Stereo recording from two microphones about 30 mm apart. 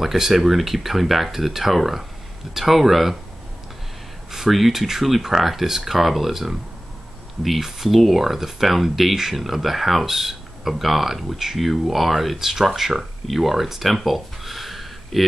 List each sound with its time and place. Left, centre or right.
0.0 s speech: centre
4.3 s speech: centre
9.1 s speech: centre
9.4 s speech: centre